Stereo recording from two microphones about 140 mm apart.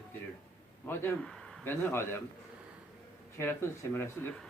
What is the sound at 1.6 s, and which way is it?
Speech, 15° left (ahead or behind).